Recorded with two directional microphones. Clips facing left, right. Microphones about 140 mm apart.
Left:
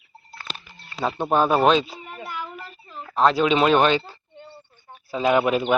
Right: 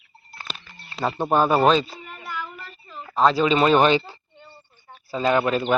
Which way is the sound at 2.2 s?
15° left (ahead or behind).